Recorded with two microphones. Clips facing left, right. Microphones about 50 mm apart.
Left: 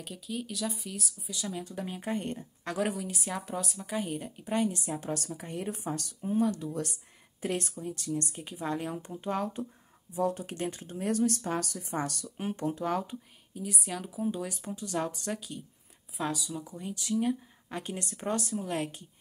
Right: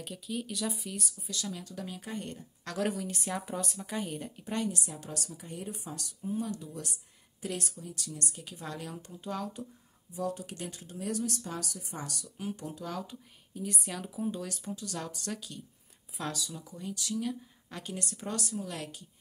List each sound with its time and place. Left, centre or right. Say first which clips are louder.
0.0 s speech: even; centre
1.3 s speech: left 3 dB; centre; by 2.4 s left
2.6 s a woman's voice: left 1 dB; centre
2.9 s speech: even; centre
4.6 s a woman's voice: left 5 dB; left
7.4 s speech: left 5 dB; left
13.6 s speech: left 1 dB; centre
14.8 s speech: left 6 dB; left
16.7 s speech: left 4 dB; left